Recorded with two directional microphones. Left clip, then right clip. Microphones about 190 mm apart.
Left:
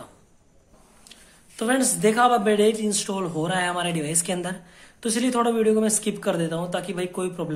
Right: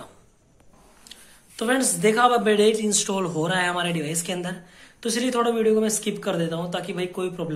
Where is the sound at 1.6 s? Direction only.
15° left (ahead or behind).